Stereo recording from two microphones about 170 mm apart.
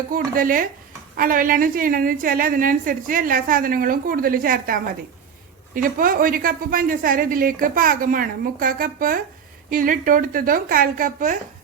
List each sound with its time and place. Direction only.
0.1 s a woman's voice: 55° right (ahead or behind)